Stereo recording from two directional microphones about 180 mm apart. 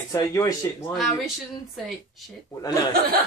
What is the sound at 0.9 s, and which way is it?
Speech, centre (ahead or behind).